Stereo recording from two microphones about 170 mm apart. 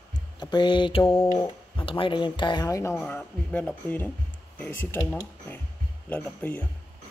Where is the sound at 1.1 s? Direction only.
30° left (ahead or behind).